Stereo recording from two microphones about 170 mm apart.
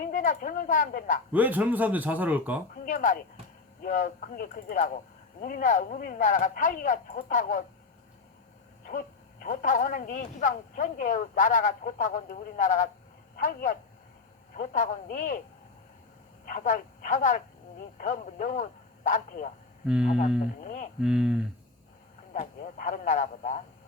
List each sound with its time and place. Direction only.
0.0 s a woman's voice: 50° left (ahead or behind)
1.3 s speech: 10° right (ahead or behind)
2.7 s speech: 50° left (ahead or behind)
8.8 s speech: 55° left (ahead or behind)
16.5 s speech: 50° left (ahead or behind)
19.8 s speech: 5° right (ahead or behind)
20.7 s speech: 50° left (ahead or behind)
21.0 s speech: 5° right (ahead or behind)
22.8 s speech: 50° left (ahead or behind)